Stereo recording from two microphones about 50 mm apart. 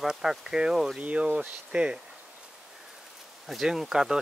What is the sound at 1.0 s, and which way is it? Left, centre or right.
Speech, right.